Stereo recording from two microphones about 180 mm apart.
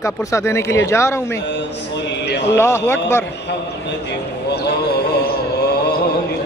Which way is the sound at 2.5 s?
15° left (ahead or behind).